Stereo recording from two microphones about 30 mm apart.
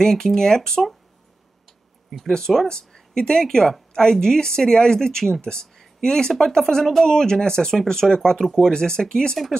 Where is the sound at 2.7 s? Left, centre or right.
Left.